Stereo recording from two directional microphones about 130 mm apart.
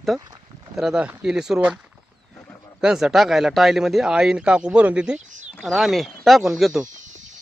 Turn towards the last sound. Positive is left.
turn(degrees=-75)  # may be behind; listen again after turning